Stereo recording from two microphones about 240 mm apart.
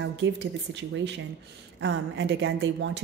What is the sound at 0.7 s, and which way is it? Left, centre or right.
A woman's voice, right.